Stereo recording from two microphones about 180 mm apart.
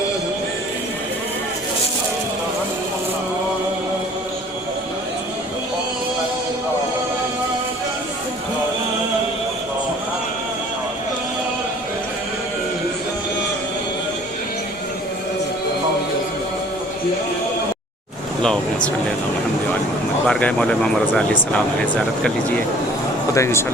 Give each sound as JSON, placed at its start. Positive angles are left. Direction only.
{"t": 20.2, "sound": "speech", "side_deg": 5}
{"t": 23.3, "sound": "speech", "side_deg": 15}